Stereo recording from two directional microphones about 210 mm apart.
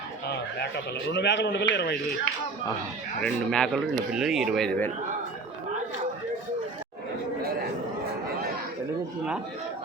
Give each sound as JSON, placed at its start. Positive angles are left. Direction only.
{"t": 1.1, "sound": "a man's voice", "side_deg": 55}
{"t": 3.2, "sound": "speech", "side_deg": 5}